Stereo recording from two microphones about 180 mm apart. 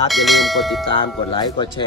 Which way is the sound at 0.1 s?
Centre (ahead or behind).